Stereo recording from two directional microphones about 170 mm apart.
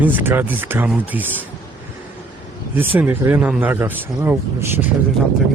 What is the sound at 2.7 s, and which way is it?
Speech, 10° right (ahead or behind).